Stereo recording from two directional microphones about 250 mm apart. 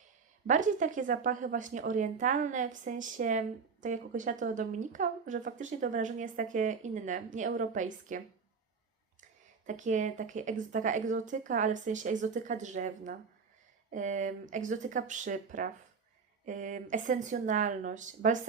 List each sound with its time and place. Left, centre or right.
0.4 s speech: right
9.6 s speech: right